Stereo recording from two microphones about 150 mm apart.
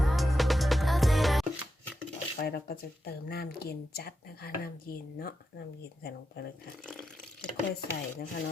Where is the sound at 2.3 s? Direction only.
90° left.